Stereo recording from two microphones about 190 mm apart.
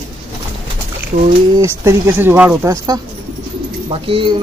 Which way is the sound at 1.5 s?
15° right (ahead or behind).